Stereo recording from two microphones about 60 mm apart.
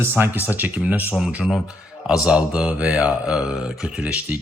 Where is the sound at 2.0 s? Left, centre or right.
Centre.